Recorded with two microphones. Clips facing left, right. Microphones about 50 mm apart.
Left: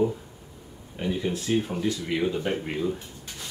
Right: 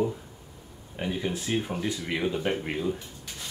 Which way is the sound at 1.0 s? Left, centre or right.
Centre.